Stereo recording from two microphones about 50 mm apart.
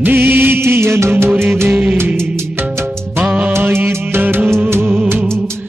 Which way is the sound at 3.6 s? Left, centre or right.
Right.